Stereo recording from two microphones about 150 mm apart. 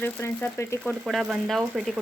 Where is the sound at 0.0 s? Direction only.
15° left (ahead or behind).